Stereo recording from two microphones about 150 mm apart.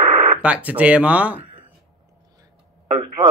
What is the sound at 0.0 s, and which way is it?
Radio, 55° right (ahead or behind).